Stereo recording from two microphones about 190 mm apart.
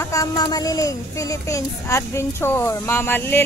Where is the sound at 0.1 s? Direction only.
20° left (ahead or behind).